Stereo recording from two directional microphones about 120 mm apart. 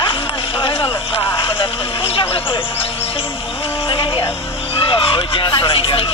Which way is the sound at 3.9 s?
45° left (ahead or behind).